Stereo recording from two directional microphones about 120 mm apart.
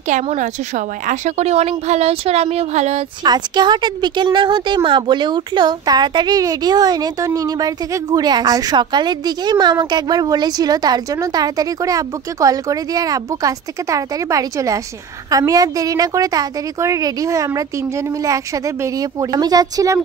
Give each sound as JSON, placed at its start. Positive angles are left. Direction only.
{"t": 0.1, "sound": "a woman's voice", "side_deg": -90}
{"t": 3.3, "sound": "a woman's voice", "side_deg": -40}